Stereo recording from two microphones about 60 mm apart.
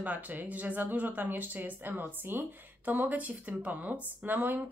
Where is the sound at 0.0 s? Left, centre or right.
Right.